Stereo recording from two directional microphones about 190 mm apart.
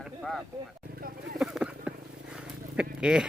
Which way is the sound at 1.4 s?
5° right (ahead or behind).